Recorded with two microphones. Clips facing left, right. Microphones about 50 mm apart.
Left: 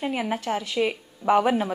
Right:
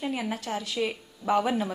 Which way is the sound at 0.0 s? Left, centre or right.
Left.